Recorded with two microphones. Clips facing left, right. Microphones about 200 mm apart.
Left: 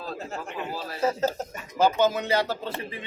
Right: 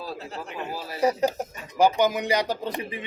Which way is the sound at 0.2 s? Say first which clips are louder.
Left 1 dB; 45° left (ahead or behind).